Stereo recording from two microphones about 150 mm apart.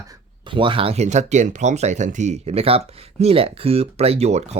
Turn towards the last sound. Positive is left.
turn(degrees=-45)  # may be behind; listen again after turning